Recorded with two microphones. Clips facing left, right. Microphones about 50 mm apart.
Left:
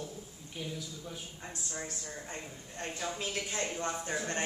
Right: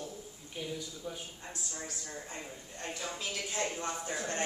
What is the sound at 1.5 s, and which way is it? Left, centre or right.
Speech, left.